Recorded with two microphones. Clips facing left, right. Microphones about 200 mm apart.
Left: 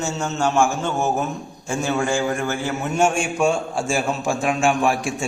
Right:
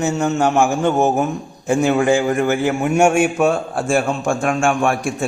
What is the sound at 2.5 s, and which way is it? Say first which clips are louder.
A man's voice: right 5 dB; 15° right (ahead or behind).